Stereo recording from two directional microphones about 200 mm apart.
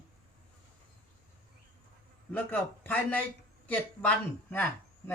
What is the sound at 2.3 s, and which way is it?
Speech, 10° left (ahead or behind).